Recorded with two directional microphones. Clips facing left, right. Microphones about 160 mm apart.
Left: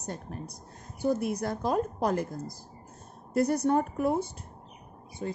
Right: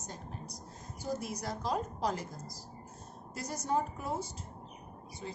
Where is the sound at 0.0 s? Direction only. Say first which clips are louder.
Left 7 dB; 60° left (ahead or behind).